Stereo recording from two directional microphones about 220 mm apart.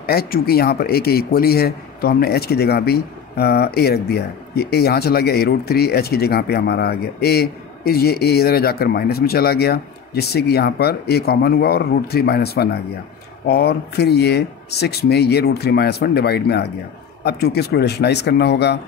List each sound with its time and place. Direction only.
0.0 s a man's voice: 45° left (ahead or behind)